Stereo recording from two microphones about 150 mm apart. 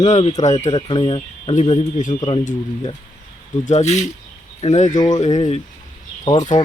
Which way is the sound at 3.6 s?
50° left (ahead or behind).